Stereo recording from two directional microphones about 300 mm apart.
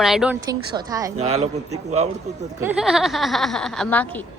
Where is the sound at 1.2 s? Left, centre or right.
Right.